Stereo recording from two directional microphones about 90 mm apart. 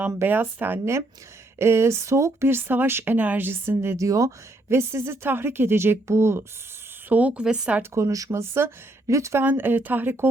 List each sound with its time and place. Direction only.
0.1 s speech: 25° right (ahead or behind)
7.1 s a woman's voice: 15° right (ahead or behind)
7.8 s speech: 35° right (ahead or behind)
9.4 s speech: 20° right (ahead or behind)